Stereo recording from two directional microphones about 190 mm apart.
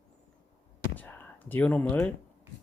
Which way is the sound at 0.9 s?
10° left (ahead or behind).